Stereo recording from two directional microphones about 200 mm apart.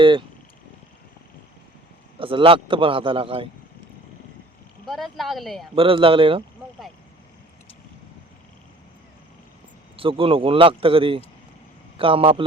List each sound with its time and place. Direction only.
0.0 s a man's voice: 25° right (ahead or behind)
2.1 s a man's voice: 25° right (ahead or behind)
4.9 s speech: centre (ahead or behind)
5.7 s a man's voice: 25° right (ahead or behind)
10.0 s a man's voice: 25° right (ahead or behind)